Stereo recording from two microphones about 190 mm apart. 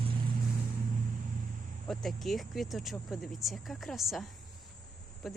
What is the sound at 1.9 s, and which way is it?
Speech, centre (ahead or behind).